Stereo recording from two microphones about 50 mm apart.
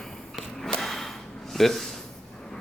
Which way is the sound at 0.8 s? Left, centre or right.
Centre.